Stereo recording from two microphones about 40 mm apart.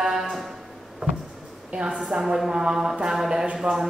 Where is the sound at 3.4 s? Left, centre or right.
Right.